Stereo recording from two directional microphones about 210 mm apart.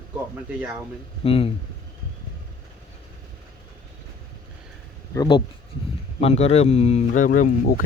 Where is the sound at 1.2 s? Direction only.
25° left (ahead or behind).